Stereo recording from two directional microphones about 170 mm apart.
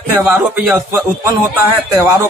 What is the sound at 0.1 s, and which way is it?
A man's voice, 5° right (ahead or behind).